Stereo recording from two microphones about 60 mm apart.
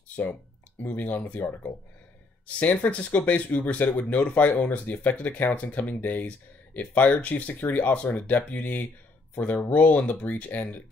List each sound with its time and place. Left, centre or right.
0.1 s speech: left